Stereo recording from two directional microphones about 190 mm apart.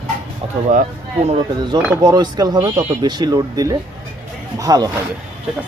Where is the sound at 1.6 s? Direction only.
25° right (ahead or behind).